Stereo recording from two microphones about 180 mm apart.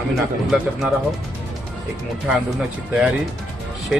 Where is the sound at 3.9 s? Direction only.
Centre (ahead or behind).